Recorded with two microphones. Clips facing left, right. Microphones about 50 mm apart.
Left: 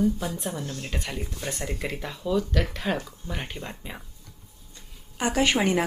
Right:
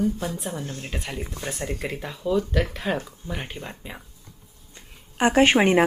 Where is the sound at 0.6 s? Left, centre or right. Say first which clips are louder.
Even; right.